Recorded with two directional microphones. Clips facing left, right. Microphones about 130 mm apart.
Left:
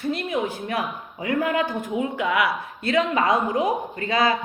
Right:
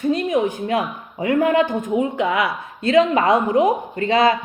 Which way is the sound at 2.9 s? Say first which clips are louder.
Right 6 dB; 40° right (ahead or behind).